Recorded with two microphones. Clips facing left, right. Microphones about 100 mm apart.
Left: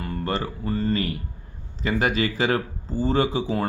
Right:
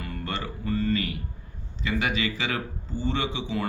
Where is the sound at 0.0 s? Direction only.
35° left (ahead or behind).